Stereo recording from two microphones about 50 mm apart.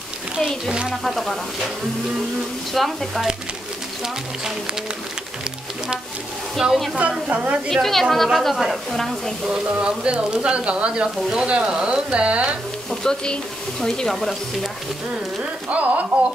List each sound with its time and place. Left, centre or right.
0.7 s speech: centre
1.0 s a woman's voice: centre
2.7 s a woman's voice: centre
6.6 s speech: centre
7.7 s a woman's voice: centre
9.5 s speech: centre
13.0 s speech: centre
14.1 s a woman's voice: centre
15.7 s speech: right